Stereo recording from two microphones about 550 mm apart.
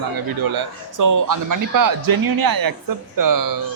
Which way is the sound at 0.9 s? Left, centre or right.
Right.